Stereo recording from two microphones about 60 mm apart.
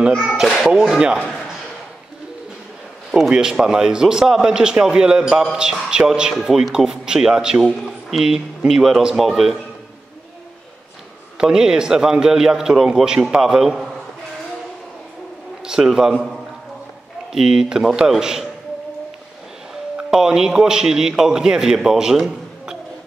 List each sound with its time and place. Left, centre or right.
0.1 s a child's voice: centre
0.6 s a man's voice: centre
1.3 s a sound: centre
3.1 s a man's voice: centre
11.3 s a man's voice: centre
15.6 s a man's voice: centre
17.3 s a man's voice: centre
20.0 s a man's voice: centre